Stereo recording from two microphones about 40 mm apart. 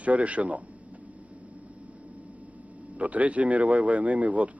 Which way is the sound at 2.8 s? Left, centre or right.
Right.